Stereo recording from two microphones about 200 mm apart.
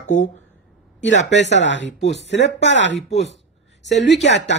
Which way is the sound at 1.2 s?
60° left (ahead or behind).